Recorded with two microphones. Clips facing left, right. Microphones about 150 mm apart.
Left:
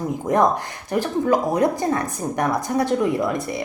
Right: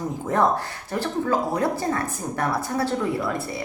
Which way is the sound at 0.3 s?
15° left (ahead or behind).